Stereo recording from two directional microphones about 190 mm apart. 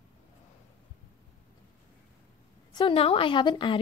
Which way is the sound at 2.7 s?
25° left (ahead or behind).